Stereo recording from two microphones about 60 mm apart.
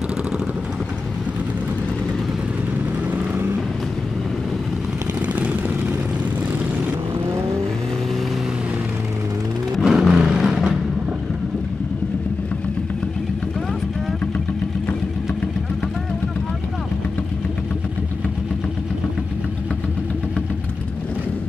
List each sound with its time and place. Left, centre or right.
5.2 s vehicle: right
9.8 s vehicle: centre